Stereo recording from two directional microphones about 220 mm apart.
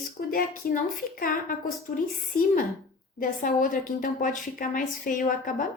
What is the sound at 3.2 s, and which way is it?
A woman's voice, 40° left (ahead or behind).